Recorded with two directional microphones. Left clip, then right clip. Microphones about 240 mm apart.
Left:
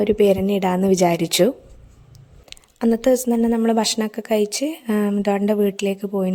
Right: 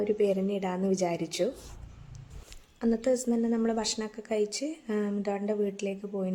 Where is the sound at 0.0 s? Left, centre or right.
Left.